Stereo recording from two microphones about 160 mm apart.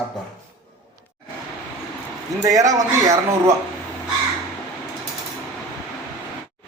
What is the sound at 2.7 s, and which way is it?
Speech, 20° right (ahead or behind).